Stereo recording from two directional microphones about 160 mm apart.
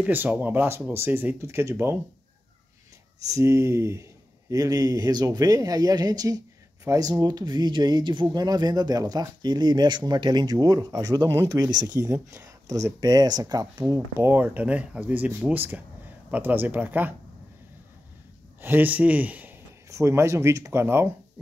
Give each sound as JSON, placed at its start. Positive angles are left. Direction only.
{"t": 0.0, "sound": "speech", "side_deg": -10}
{"t": 3.3, "sound": "speech", "side_deg": -20}
{"t": 18.6, "sound": "speech", "side_deg": -10}